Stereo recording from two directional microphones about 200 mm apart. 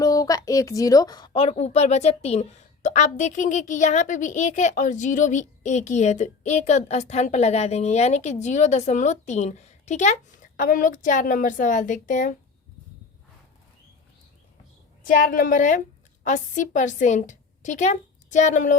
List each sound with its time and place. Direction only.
0.0 s a woman's voice: 20° left (ahead or behind); by 12.4 s 40° left (ahead or behind)
15.0 s a woman's voice: 45° left (ahead or behind)